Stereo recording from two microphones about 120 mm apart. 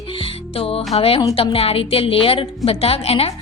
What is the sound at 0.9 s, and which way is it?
A woman's voice, 55° left (ahead or behind).